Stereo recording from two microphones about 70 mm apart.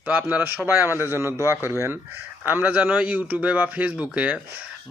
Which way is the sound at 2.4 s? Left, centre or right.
Right.